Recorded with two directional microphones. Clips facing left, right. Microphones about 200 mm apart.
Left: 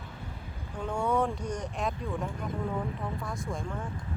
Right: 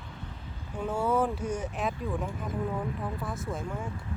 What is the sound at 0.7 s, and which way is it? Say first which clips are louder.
Speech: right 1 dB; 5° right (ahead or behind).